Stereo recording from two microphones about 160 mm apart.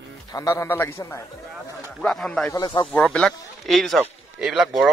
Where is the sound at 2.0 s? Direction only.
5° left (ahead or behind).